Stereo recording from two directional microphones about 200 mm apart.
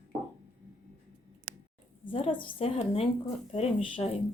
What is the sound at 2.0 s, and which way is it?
A woman's voice, 25° left (ahead or behind).